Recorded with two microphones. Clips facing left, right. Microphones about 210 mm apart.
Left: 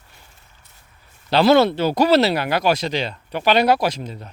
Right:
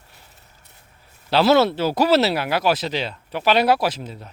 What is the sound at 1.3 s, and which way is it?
Speech, 5° right (ahead or behind).